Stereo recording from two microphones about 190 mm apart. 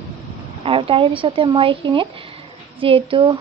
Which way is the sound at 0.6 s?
30° right (ahead or behind).